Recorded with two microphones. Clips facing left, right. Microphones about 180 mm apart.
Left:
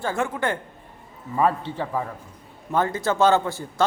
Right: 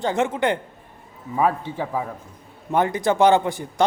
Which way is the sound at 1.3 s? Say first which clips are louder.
Right 1 dB; 10° right (ahead or behind).